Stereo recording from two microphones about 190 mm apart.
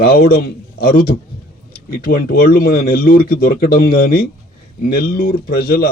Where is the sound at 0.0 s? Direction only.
55° left (ahead or behind).